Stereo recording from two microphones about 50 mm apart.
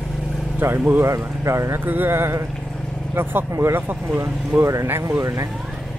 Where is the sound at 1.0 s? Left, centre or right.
Right.